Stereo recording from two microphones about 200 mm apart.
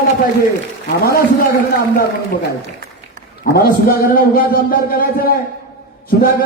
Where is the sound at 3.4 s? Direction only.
50° left (ahead or behind).